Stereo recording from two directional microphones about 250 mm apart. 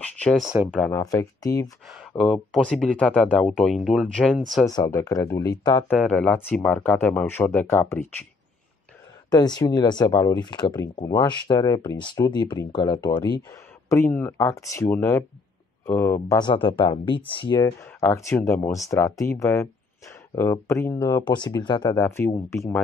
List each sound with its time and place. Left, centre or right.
0.0 s speech: centre
1.9 s speech: centre
4.6 s speech: centre
5.9 s speech: centre
9.3 s speech: centre